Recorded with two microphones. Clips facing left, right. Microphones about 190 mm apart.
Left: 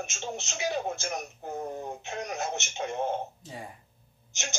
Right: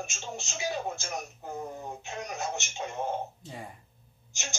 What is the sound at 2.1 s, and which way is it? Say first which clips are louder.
Speech: left 2 dB; 20° left (ahead or behind).